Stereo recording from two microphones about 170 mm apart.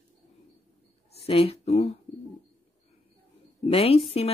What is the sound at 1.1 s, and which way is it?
Speech, 35° left (ahead or behind).